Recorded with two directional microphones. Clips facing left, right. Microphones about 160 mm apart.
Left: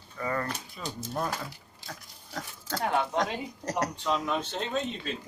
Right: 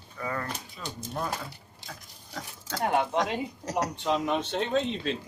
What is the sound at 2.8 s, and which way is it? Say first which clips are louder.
Speech: right 2 dB; 15° right (ahead or behind).